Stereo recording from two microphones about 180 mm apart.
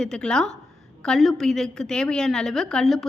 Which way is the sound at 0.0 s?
5° left (ahead or behind).